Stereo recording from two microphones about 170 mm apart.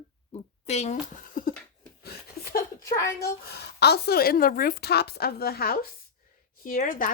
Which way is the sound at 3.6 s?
75° left (ahead or behind).